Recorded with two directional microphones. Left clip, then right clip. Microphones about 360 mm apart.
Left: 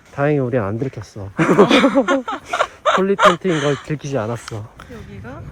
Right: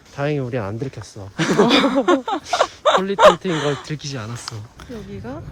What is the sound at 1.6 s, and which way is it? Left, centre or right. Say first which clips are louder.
Speech: left 2 dB; centre.